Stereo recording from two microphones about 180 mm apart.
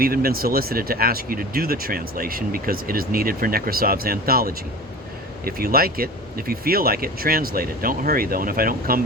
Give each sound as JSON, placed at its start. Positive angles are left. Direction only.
{"t": 0.0, "sound": "speech", "side_deg": -55}